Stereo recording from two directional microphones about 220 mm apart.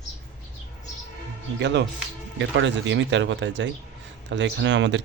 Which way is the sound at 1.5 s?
50° right (ahead or behind).